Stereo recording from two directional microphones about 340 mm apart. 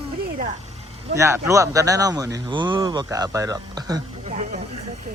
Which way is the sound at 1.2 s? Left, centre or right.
Centre.